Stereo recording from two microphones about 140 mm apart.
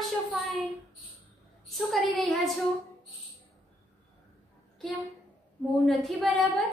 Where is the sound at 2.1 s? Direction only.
Centre (ahead or behind).